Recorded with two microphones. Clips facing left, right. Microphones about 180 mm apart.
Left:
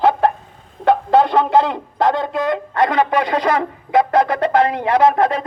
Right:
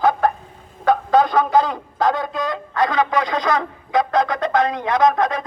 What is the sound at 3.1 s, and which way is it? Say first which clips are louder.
Speech: left 3 dB; 60° left (ahead or behind).